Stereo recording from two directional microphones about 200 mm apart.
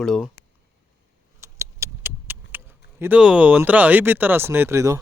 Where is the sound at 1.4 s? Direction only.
15° right (ahead or behind).